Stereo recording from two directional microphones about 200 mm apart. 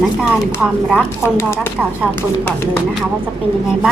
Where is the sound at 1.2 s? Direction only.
10° left (ahead or behind).